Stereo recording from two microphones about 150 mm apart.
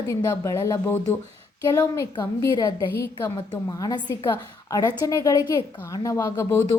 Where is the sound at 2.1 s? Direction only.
30° left (ahead or behind).